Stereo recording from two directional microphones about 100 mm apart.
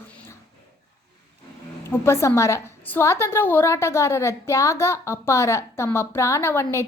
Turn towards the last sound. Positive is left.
turn(degrees=25)  # may be behind; listen again after turning